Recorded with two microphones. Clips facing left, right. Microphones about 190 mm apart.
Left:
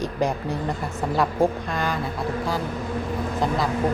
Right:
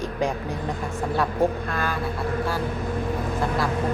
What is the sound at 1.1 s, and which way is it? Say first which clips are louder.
Speech: left 2 dB; 15° left (ahead or behind).